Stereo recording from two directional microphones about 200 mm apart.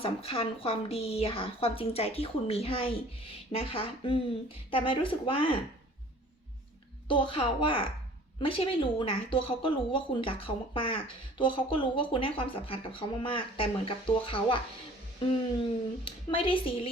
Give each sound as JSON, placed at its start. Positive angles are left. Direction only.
{"t": 0.0, "sound": "speech", "side_deg": 30}
{"t": 7.1, "sound": "speech", "side_deg": 25}
{"t": 16.0, "sound": "speech", "side_deg": 25}